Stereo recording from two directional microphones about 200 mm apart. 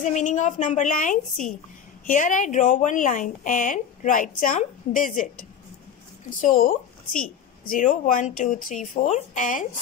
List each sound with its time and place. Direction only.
0.0 s a woman's voice: 35° left (ahead or behind)
6.4 s a woman's voice: 45° left (ahead or behind)